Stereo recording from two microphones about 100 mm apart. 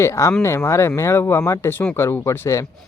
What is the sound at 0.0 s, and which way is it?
Speech, 30° left (ahead or behind).